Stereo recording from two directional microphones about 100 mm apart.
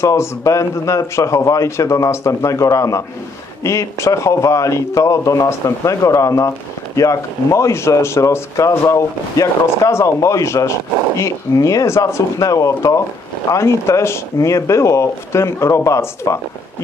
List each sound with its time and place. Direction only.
0.0 s a man's voice: 30° left (ahead or behind)